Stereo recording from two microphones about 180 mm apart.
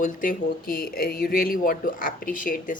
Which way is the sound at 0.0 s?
50° left (ahead or behind).